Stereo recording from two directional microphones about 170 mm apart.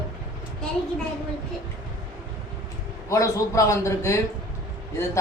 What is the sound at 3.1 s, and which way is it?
Speech, 20° left (ahead or behind).